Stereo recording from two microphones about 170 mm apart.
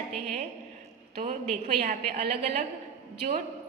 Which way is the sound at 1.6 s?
40° right (ahead or behind).